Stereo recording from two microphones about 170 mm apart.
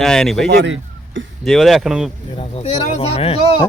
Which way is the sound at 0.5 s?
90° right.